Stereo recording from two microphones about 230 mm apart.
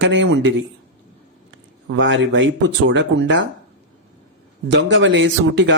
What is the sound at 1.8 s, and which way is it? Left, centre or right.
A man's voice, right.